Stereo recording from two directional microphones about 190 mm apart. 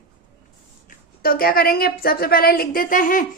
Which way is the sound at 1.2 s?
50° left (ahead or behind).